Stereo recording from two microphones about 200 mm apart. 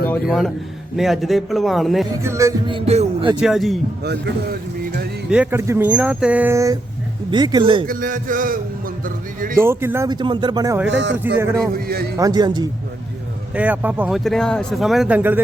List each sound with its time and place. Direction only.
0.3 s speech: centre (ahead or behind)
2.2 s speech: 15° right (ahead or behind); by 3.3 s 30° right (ahead or behind)
3.4 s speech: centre (ahead or behind)
4.0 s speech: 55° right (ahead or behind)
5.3 s speech: 10° right (ahead or behind); by 7.9 s 25° right (ahead or behind)
7.9 s music: 45° right (ahead or behind)
9.6 s speech: 10° right (ahead or behind)
10.8 s speech: 65° right (ahead or behind)
11.7 s music: 50° right (ahead or behind)
12.1 s speech: 20° right (ahead or behind)
13.5 s speech: 5° right (ahead or behind)